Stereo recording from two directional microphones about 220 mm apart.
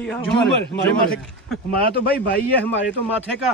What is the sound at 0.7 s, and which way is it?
A man's voice, 50° left (ahead or behind).